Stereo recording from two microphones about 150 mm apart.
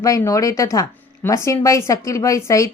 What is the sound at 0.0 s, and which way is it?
A woman's voice, 20° left (ahead or behind).